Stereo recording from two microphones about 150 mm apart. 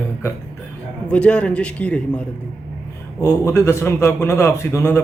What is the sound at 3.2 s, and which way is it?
A man's voice, 20° left (ahead or behind).